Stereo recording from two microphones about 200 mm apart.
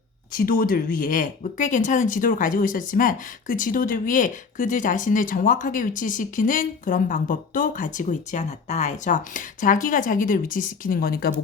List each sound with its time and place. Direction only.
0.3 s speech: 45° left (ahead or behind)